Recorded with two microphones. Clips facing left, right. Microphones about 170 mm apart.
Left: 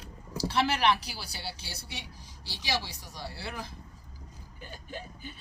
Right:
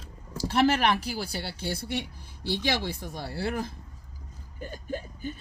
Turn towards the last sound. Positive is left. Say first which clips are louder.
# right 8 dB
turn(degrees=-45)  # may be behind; listen again after turning